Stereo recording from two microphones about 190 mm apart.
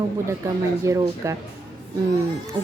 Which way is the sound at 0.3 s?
15° right (ahead or behind).